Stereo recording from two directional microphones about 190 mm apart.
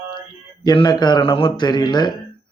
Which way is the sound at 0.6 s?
20° left (ahead or behind).